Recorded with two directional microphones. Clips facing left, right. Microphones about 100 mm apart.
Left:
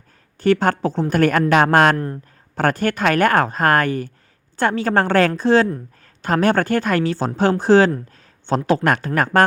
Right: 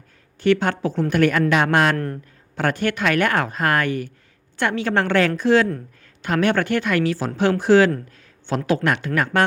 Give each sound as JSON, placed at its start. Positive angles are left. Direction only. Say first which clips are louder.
{"t": 0.3, "sound": "a woman's voice", "louder": "left 2 dB", "side_deg": 40}